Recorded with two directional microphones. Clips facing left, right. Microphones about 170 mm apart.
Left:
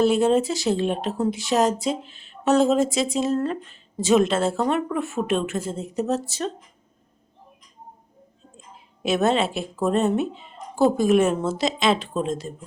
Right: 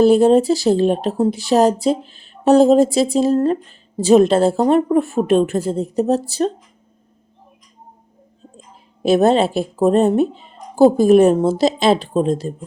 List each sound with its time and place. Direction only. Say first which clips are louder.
0.0 s speech: right 7 dB; 35° right (ahead or behind)
9.0 s speech: right 7 dB; 35° right (ahead or behind)